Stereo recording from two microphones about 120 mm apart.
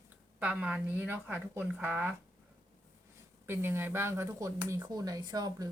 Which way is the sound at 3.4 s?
20° right (ahead or behind).